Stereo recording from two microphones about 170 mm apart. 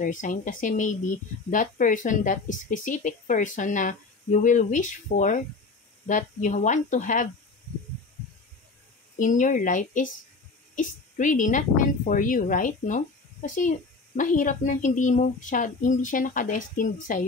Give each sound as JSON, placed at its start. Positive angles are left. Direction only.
{"t": 0.0, "sound": "speech", "side_deg": 50}
{"t": 9.2, "sound": "speech", "side_deg": 50}